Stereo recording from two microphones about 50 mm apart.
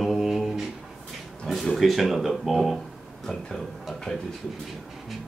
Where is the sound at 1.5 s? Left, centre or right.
Centre.